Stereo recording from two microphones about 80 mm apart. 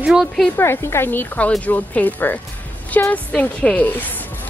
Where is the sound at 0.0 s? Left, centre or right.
Centre.